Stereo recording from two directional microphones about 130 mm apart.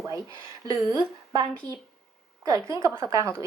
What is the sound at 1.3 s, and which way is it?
Speech, 30° right (ahead or behind).